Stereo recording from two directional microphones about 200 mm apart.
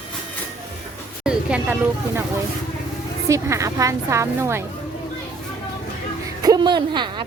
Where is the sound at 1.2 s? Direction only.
5° right (ahead or behind).